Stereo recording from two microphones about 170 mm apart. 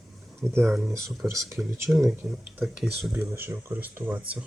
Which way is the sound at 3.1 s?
15° right (ahead or behind).